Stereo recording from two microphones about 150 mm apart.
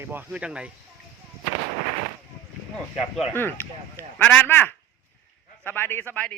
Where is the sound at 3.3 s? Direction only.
15° left (ahead or behind).